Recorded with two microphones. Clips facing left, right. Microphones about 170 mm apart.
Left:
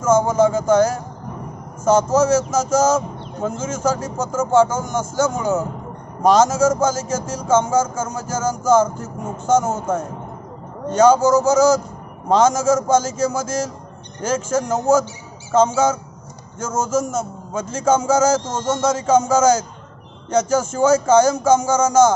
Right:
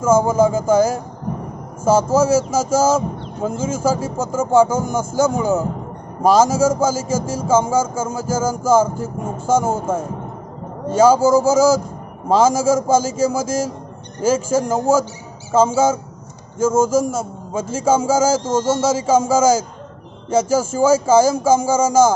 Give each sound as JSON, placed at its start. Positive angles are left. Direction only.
{"t": 0.0, "sound": "speech", "side_deg": -10}
{"t": 7.0, "sound": "music", "side_deg": -90}
{"t": 7.3, "sound": "speech", "side_deg": -10}
{"t": 7.6, "sound": "music", "side_deg": -90}
{"t": 7.9, "sound": "a man's voice", "side_deg": -10}